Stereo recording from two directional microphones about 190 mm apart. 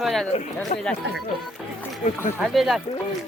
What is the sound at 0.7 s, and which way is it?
Speech, 40° left (ahead or behind).